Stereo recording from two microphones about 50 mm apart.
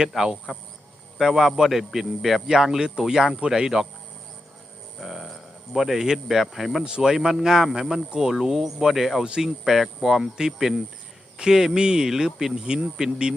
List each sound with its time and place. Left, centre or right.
0.1 s speech: centre
4.9 s a sound: centre
5.7 s speech: centre
6.8 s speech: centre